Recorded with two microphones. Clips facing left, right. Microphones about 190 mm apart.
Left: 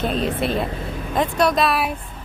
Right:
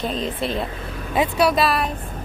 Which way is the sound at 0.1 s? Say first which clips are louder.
Left 3 dB; 65° left (ahead or behind).